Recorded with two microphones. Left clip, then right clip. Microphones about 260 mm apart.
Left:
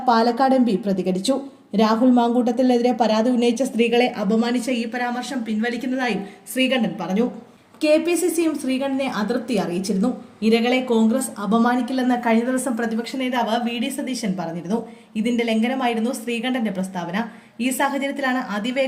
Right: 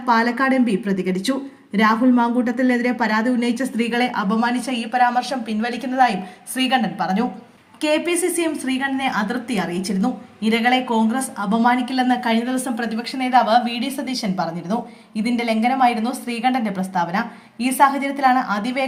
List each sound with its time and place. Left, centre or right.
0.0 s a woman's voice: centre
4.1 s a woman's voice: centre
7.9 s a woman's voice: centre